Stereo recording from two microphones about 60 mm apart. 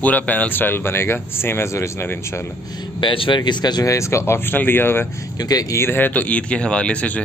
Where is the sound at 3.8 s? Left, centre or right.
Left.